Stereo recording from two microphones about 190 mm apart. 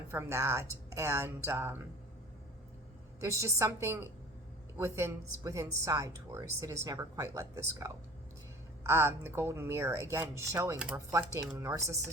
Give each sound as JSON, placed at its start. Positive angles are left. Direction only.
{"t": 0.1, "sound": "speech", "side_deg": -15}
{"t": 3.2, "sound": "speech", "side_deg": -15}
{"t": 11.1, "sound": "speech", "side_deg": -15}